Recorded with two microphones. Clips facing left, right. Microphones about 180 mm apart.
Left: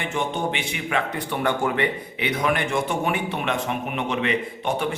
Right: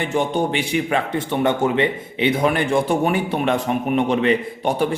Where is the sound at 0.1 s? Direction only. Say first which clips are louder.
Right 4 dB; 35° right (ahead or behind).